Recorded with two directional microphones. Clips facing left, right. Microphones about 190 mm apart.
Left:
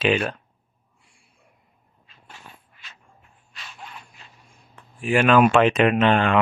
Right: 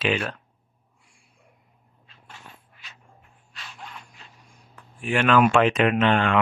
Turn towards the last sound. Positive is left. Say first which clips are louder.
# left 2 dB
turn(degrees=20)  # may be behind; listen again after turning